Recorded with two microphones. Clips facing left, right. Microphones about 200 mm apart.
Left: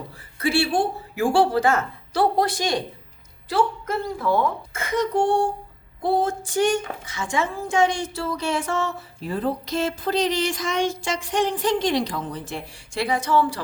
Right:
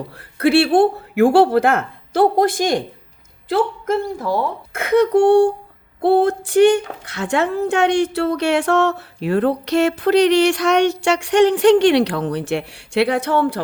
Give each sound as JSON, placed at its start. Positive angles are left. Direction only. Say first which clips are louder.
{"t": 0.2, "sound": "a woman's voice", "louder": "right 8 dB", "side_deg": -65}
{"t": 4.2, "sound": "speech", "louder": "right 1 dB", "side_deg": -35}
{"t": 4.7, "sound": "a woman's voice", "louder": "right 9 dB", "side_deg": -65}